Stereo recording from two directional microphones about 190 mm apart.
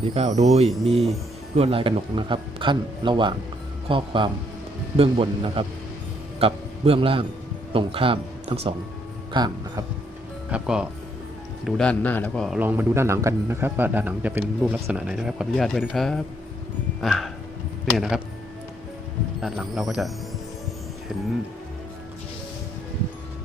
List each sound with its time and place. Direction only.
0.0 s speech: 30° right (ahead or behind)
1.5 s a man's voice: 30° right (ahead or behind)
10.5 s a man's voice: 5° right (ahead or behind)
12.5 s a man's voice: 10° right (ahead or behind)
19.4 s a man's voice: centre (ahead or behind)